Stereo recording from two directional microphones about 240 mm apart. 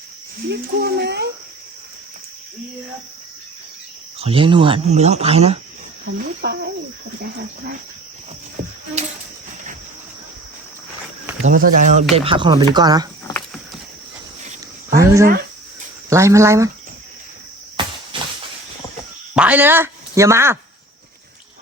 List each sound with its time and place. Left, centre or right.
0.5 s speech: right
4.2 s speech: right
6.1 s speech: right
8.6 s a sound: right
11.4 s speech: right
12.1 s speech: right
14.9 s speech: centre
17.8 s a sound: centre
19.3 s speech: centre